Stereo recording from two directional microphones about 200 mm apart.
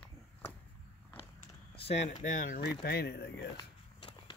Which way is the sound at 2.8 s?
55° left (ahead or behind).